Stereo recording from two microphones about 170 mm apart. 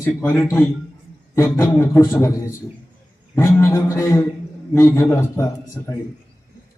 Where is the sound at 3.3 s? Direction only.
15° left (ahead or behind).